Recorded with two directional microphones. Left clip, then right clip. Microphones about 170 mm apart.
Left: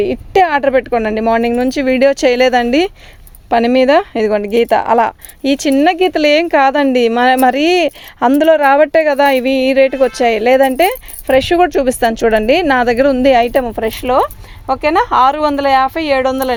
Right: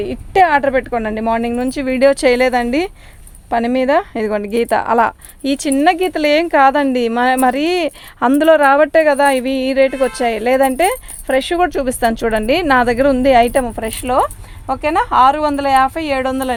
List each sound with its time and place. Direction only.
0.0 s speech: 50° left (ahead or behind)